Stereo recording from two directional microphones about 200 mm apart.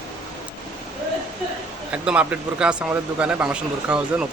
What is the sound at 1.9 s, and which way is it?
Speech, 5° right (ahead or behind).